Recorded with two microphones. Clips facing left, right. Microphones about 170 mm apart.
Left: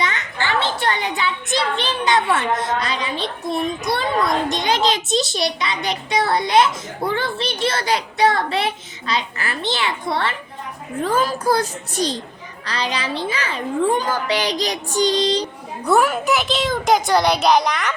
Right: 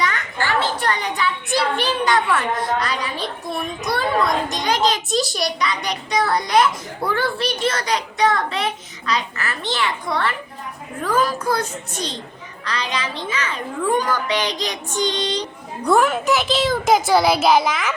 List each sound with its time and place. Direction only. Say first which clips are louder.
0.0 s children playing: right 1 dB; 25° left (ahead or behind)
1.0 s a child's voice: even; 25° left (ahead or behind)
11.0 s child singing: left 1 dB; 30° left (ahead or behind)
15.9 s a child's voice: even; 5° left (ahead or behind)